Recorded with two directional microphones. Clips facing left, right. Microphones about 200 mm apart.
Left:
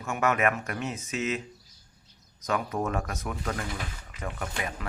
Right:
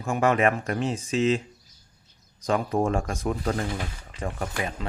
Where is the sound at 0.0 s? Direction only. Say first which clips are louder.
Right 4 dB; 30° right (ahead or behind).